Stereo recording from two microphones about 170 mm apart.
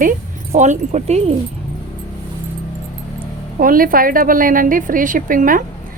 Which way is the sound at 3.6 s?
55° right (ahead or behind).